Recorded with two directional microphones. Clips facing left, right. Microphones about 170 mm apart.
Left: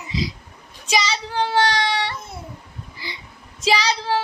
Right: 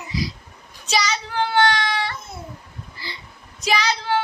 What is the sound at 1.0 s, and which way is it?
Child singing, 30° left (ahead or behind).